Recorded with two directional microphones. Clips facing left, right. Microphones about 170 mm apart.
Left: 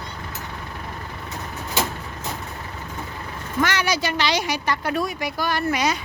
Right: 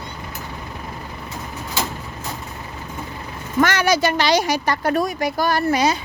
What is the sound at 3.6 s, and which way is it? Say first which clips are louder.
Speech: right 5 dB; 45° right (ahead or behind).